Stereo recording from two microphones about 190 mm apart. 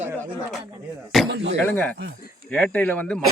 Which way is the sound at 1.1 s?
Centre (ahead or behind).